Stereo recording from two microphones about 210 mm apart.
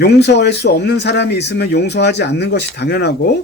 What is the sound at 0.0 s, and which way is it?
Speech, 55° left (ahead or behind).